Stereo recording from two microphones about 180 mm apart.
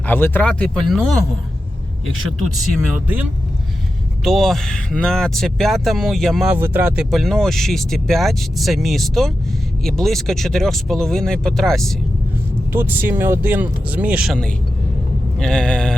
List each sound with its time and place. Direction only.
0.1 s speech: 10° left (ahead or behind)
2.9 s speech: 10° right (ahead or behind)
6.5 s speech: 10° right (ahead or behind)
12.7 s speech: 10° right (ahead or behind)
15.4 s speech: 5° left (ahead or behind)